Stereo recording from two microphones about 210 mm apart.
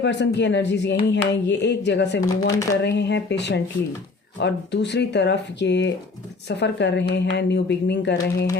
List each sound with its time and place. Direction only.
0.0 s speech: 55° left (ahead or behind)